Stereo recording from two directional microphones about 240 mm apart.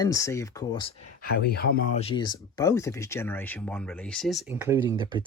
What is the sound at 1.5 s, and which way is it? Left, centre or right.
Speech, left.